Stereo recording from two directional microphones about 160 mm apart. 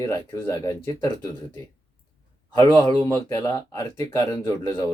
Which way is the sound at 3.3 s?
20° left (ahead or behind).